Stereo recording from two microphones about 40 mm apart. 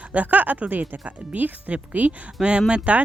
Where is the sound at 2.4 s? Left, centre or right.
Right.